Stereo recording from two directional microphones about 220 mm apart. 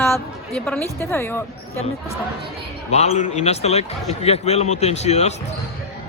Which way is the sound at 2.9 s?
30° left (ahead or behind).